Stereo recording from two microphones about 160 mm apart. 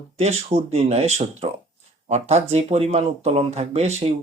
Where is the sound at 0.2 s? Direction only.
40° right (ahead or behind).